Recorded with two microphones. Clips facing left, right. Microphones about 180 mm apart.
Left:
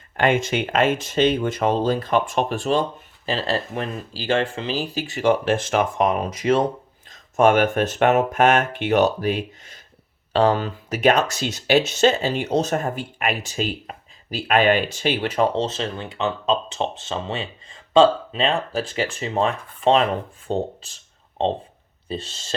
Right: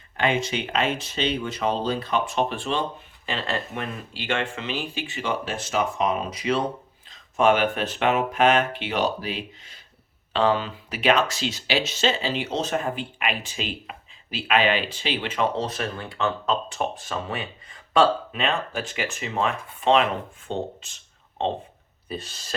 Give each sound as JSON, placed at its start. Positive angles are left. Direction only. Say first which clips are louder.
{"t": 0.2, "sound": "speech", "louder": "left 4 dB", "side_deg": 50}
{"t": 15.6, "sound": "speech", "louder": "left 3 dB", "side_deg": 25}
{"t": 20.5, "sound": "a sound", "louder": "left 5 dB", "side_deg": 35}
{"t": 22.1, "sound": "speech", "louder": "left 4 dB", "side_deg": 25}